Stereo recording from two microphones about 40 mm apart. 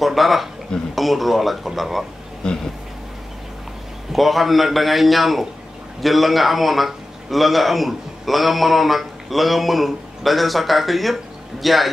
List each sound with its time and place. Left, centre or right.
0.0 s a man's voice: centre
2.4 s speech: centre
4.1 s a man's voice: centre